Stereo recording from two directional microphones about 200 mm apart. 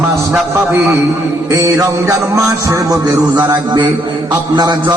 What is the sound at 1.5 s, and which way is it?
A man's voice, 15° right (ahead or behind).